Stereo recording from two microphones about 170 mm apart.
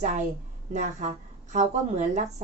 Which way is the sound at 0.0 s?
45° right (ahead or behind).